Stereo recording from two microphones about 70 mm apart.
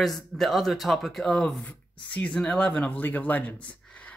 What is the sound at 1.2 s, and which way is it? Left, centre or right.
Speech, centre.